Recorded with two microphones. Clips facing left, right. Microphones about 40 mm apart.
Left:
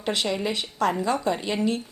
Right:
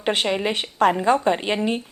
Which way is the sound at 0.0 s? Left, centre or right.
Right.